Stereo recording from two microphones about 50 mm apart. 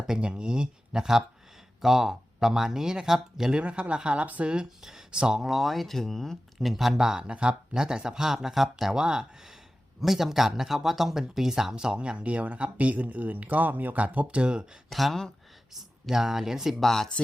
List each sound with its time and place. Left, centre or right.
0.1 s speech: centre
3.6 s speech: right
4.5 s speech: centre
5.5 s speech: centre
14.8 s speech: centre
15.7 s speech: centre